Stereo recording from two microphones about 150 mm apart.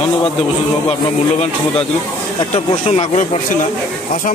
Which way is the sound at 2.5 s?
45° left (ahead or behind).